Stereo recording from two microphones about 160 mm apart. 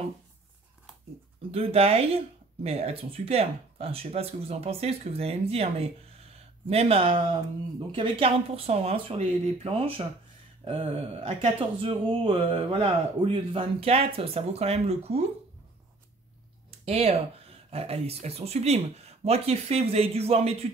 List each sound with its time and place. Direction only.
1.5 s speech: 40° right (ahead or behind)
16.8 s speech: 40° right (ahead or behind)